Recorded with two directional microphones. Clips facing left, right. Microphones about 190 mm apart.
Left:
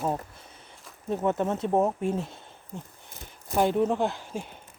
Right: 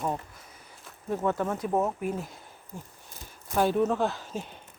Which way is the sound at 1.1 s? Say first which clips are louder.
Left 2 dB; 20° left (ahead or behind).